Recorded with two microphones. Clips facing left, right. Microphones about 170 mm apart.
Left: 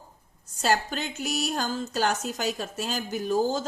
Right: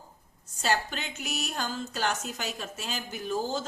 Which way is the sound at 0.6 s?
40° left (ahead or behind).